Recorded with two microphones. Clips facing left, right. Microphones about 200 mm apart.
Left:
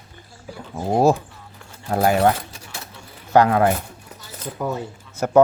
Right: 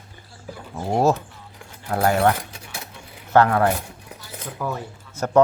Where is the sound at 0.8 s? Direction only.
20° left (ahead or behind).